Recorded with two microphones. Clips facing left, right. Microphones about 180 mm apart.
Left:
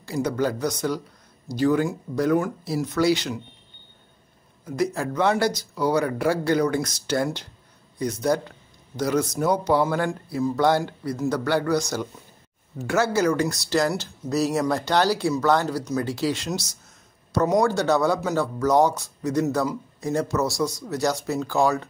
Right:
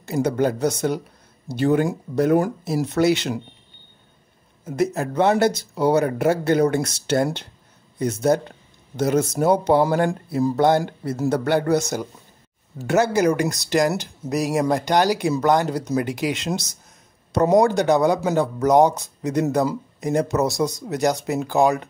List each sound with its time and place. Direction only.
0.2 s speech: 25° right (ahead or behind)
4.7 s speech: 20° right (ahead or behind)